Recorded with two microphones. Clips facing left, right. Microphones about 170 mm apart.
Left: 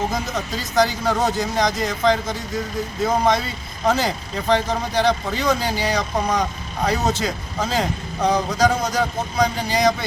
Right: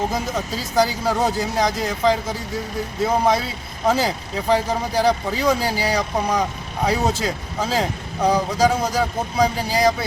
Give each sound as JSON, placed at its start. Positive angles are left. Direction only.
{"t": 0.1, "sound": "speech", "side_deg": -10}